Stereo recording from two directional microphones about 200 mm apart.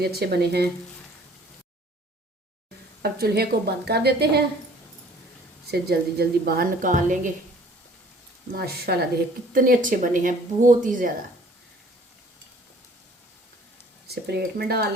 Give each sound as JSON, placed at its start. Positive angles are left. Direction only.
{"t": 0.0, "sound": "a woman's voice", "side_deg": -50}
{"t": 3.0, "sound": "a woman's voice", "side_deg": -50}
{"t": 5.7, "sound": "a woman's voice", "side_deg": -55}
{"t": 8.5, "sound": "a woman's voice", "side_deg": -50}
{"t": 14.1, "sound": "a woman's voice", "side_deg": -55}